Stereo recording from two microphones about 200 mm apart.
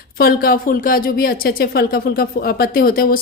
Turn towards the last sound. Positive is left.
turn(degrees=45)  # may be behind; listen again after turning